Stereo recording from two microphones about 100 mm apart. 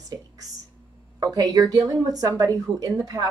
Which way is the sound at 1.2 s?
40° right (ahead or behind).